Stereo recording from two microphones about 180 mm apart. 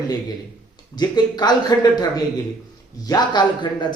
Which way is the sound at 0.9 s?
25° left (ahead or behind).